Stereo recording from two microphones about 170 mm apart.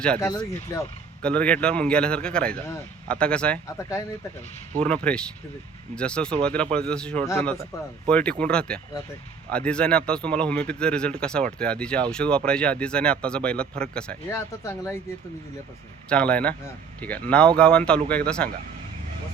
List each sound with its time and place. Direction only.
0.0 s a man's voice: 5° left (ahead or behind)
0.3 s speech: 20° left (ahead or behind)
1.2 s speech: 5° left (ahead or behind)
3.8 s speech: 15° left (ahead or behind)
4.8 s a man's voice: 5° left (ahead or behind)
8.1 s a man's voice: 5° left (ahead or behind)
16.0 s a man's voice: 5° left (ahead or behind)